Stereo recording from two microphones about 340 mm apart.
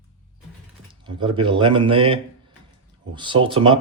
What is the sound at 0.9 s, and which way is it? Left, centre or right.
Speech, centre.